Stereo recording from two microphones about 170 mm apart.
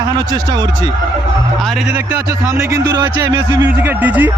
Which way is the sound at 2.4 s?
15° right (ahead or behind).